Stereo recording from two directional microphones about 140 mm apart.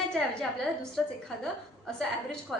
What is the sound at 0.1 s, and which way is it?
A woman's voice, 5° left (ahead or behind).